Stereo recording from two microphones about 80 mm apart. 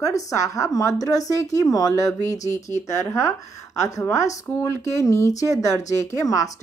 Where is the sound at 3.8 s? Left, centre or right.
Left.